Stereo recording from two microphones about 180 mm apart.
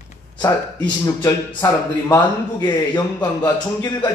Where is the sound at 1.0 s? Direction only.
20° left (ahead or behind).